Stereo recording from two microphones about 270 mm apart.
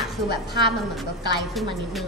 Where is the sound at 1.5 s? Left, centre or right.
Centre.